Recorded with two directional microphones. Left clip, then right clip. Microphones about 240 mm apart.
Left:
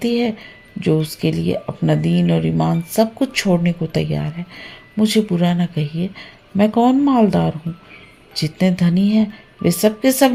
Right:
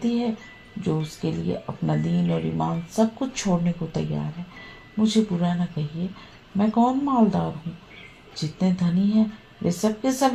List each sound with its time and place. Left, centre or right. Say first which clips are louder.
0.0 s speech: left 7 dB; left